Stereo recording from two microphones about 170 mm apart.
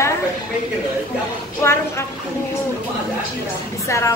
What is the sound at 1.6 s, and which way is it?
Speech, 15° left (ahead or behind).